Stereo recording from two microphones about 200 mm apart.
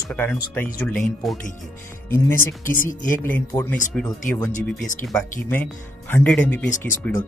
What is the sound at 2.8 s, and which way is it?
Speech, 10° left (ahead or behind).